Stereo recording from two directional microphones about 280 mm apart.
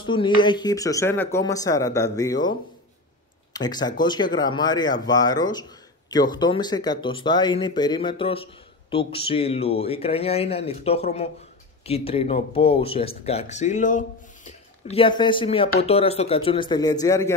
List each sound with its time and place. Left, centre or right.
0.0 s speech: centre
3.5 s speech: centre